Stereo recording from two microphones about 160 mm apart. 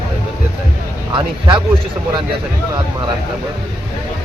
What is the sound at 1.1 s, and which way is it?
Speech, 30° right (ahead or behind).